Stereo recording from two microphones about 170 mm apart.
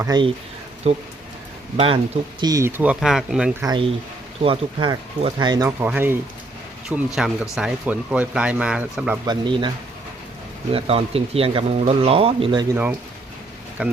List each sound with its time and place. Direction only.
0.0 s speech: 25° right (ahead or behind)
0.9 s speech: 40° right (ahead or behind)
2.4 s speech: 20° right (ahead or behind); by 3.5 s 5° right (ahead or behind)
3.6 s speech: 25° right (ahead or behind); by 9.1 s 5° right (ahead or behind)
9.2 s speech: 25° right (ahead or behind)
12.7 s speech: 10° right (ahead or behind)